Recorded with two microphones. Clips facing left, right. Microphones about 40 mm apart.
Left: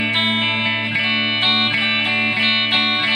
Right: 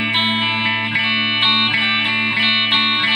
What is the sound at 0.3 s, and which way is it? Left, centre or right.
Music, right.